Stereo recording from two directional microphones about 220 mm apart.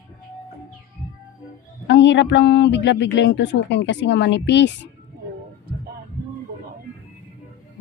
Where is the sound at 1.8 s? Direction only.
55° left (ahead or behind).